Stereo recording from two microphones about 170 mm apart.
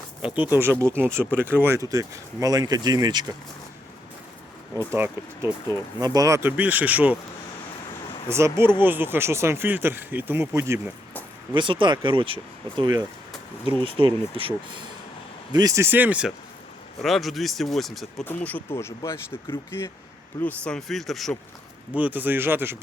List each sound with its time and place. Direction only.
0.4 s speech: 15° right (ahead or behind)
4.7 s speech: 15° right (ahead or behind)
5.6 s speech: 20° right (ahead or behind)
8.3 s speech: 15° right (ahead or behind)
11.5 s speech: 30° right (ahead or behind)
15.5 s speech: 20° right (ahead or behind); by 18.3 s centre (ahead or behind)
18.4 s speech: 10° left (ahead or behind)
21.9 s speech: 10° right (ahead or behind)